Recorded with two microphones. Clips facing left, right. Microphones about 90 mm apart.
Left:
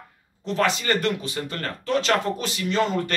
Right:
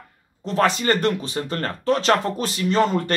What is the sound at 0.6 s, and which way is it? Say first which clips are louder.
Speech: right 4 dB; 35° right (ahead or behind).